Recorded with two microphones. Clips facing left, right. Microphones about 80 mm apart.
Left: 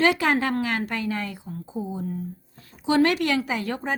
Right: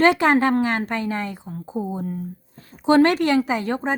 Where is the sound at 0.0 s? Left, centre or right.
Right.